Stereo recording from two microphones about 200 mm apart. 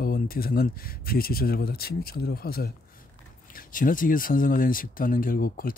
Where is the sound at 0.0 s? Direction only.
45° left (ahead or behind).